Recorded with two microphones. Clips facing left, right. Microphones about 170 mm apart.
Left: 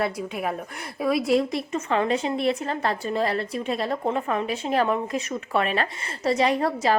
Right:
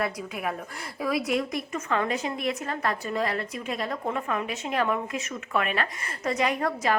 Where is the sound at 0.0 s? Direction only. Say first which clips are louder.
Left 3 dB; 30° left (ahead or behind).